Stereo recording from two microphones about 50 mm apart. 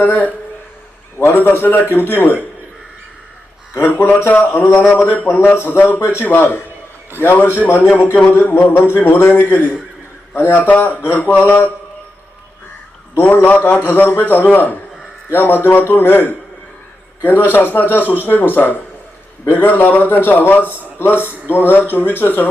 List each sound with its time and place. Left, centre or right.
0.0 s a man's voice: left
3.8 s a man's voice: left
7.7 s a man's voice: left
9.3 s a man's voice: left
10.6 s a man's voice: left
13.1 s a man's voice: left
17.5 s a man's voice: left